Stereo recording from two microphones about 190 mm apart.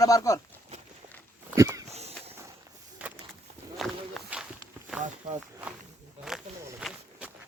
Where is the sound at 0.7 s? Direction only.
35° right (ahead or behind).